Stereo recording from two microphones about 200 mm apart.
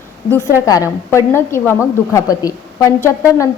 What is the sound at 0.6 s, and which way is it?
A woman's voice, 15° left (ahead or behind).